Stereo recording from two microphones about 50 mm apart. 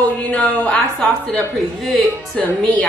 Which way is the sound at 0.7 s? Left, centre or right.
Left.